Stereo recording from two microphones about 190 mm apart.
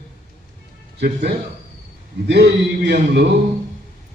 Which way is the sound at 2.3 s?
60° right (ahead or behind).